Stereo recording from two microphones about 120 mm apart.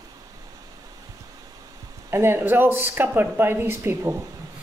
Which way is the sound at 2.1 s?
20° right (ahead or behind).